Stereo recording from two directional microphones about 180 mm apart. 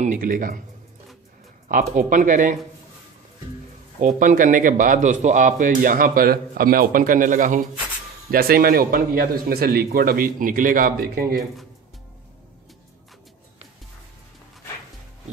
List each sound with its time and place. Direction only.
0.0 s a man's voice: 50° right (ahead or behind)
1.7 s a man's voice: 50° right (ahead or behind)
4.0 s a man's voice: 50° right (ahead or behind)